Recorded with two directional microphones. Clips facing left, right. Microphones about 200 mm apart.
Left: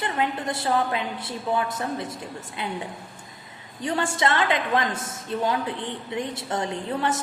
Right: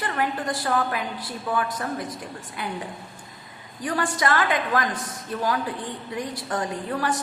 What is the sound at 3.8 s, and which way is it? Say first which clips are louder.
A woman's voice: left 1 dB; 25° left (ahead or behind).